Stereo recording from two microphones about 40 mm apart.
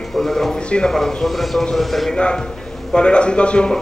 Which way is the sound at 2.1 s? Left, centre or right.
Left.